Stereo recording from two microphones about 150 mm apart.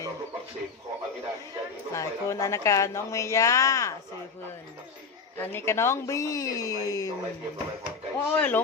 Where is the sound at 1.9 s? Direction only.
20° left (ahead or behind).